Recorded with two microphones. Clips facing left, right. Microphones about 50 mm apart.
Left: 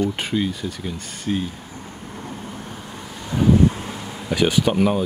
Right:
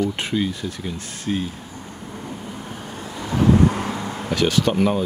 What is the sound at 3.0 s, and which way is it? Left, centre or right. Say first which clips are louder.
Vehicle: right 1 dB; right.